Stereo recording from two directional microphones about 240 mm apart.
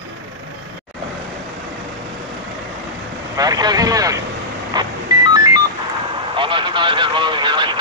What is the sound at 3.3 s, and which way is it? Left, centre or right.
Vehicle, centre.